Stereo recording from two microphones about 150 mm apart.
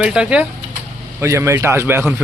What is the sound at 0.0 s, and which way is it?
Speech, 5° right (ahead or behind).